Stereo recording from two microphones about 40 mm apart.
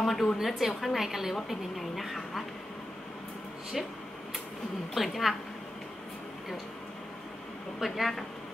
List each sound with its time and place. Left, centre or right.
0.0 s a sound: centre
0.4 s a woman's voice: centre
4.9 s speech: centre
7.8 s speech: centre